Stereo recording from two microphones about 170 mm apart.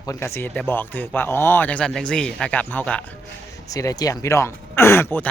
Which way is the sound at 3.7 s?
20° left (ahead or behind).